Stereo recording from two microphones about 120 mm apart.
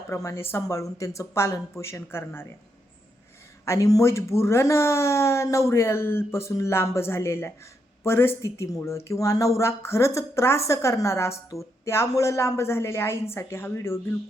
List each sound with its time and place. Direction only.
0.1 s speech: 25° left (ahead or behind)
3.7 s speech: 30° left (ahead or behind)